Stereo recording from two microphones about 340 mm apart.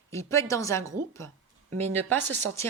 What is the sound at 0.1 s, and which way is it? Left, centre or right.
A woman's voice, centre.